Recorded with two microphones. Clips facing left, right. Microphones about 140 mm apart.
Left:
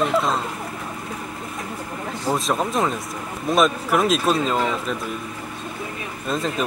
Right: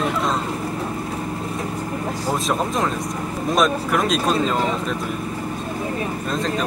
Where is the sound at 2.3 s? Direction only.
Centre (ahead or behind).